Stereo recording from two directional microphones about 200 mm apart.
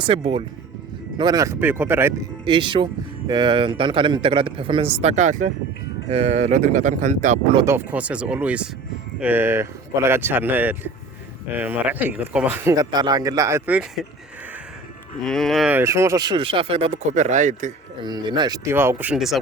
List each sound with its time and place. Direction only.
0.0 s speech: 30° right (ahead or behind)
1.2 s speech: 20° right (ahead or behind)
2.4 s speech: 25° right (ahead or behind)
7.5 s speech: 15° right (ahead or behind)
15.2 s speech: centre (ahead or behind); by 17.7 s 35° right (ahead or behind)
18.0 s speech: 20° right (ahead or behind); by 19.4 s centre (ahead or behind)